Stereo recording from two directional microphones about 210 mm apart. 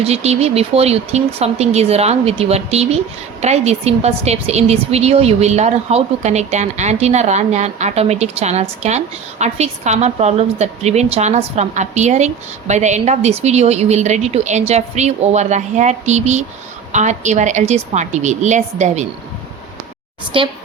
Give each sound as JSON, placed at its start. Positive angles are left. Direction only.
{"t": 0.0, "sound": "a woman's voice", "side_deg": -30}
{"t": 20.3, "sound": "speech", "side_deg": -25}